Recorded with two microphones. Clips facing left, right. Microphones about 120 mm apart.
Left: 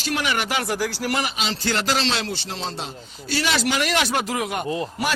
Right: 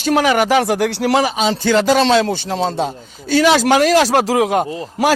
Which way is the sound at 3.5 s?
90° right.